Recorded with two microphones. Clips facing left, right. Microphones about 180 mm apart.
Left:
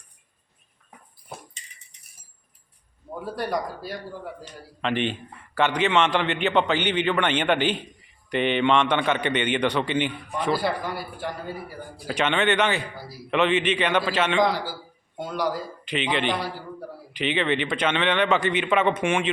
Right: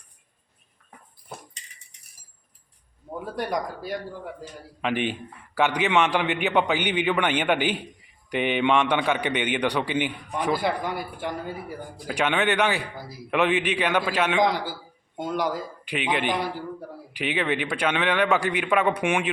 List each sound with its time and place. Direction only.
3.3 s a man's voice: 15° right (ahead or behind)